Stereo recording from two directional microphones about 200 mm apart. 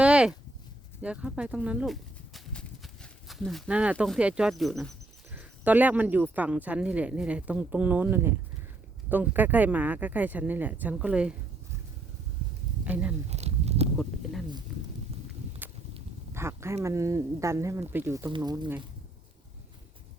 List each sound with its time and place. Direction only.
0.0 s a sound: 5° right (ahead or behind)
1.0 s speech: 5° right (ahead or behind)
12.8 s speech: 5° right (ahead or behind)
13.3 s a sound: 30° right (ahead or behind)
15.6 s walk: 10° right (ahead or behind)
16.3 s speech: 15° right (ahead or behind)